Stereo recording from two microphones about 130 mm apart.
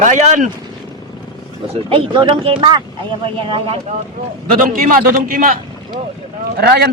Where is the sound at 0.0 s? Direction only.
75° right (ahead or behind).